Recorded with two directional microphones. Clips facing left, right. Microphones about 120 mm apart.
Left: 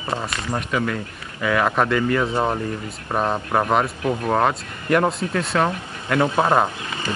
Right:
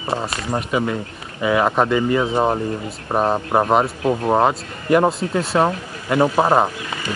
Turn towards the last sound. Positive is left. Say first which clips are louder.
# right 3 dB
turn(degrees=-30)  # may be behind; listen again after turning